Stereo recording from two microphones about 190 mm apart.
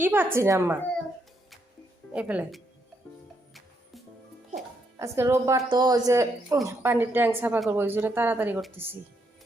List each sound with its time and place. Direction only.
0.0 s a woman's voice: 10° right (ahead or behind)
2.1 s a woman's voice: 10° right (ahead or behind)
4.9 s a woman's voice: 15° right (ahead or behind)